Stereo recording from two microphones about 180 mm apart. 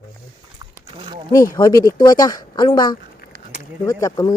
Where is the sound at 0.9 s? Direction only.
30° right (ahead or behind).